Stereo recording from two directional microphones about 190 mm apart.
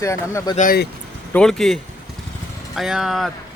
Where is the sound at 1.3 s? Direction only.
5° left (ahead or behind).